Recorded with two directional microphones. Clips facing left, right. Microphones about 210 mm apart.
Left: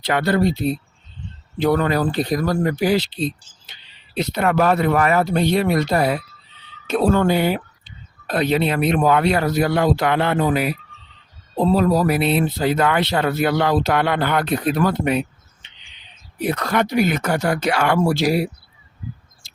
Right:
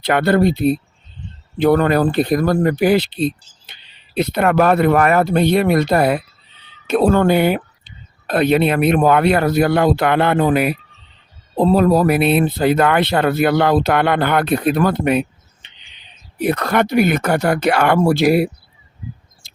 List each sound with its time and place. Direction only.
0.0 s speech: 55° right (ahead or behind)
16.4 s speech: 60° right (ahead or behind)
19.4 s mouse: 55° right (ahead or behind)